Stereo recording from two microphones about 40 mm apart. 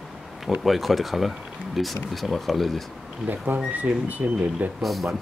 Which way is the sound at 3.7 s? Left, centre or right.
Right.